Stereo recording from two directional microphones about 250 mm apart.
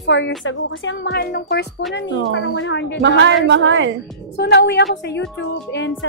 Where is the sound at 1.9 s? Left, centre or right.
Left.